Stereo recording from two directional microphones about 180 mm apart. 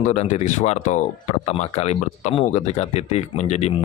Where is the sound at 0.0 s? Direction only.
40° left (ahead or behind).